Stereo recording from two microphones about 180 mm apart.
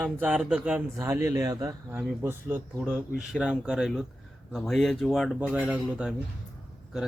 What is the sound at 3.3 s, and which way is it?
A man's voice, 5° right (ahead or behind).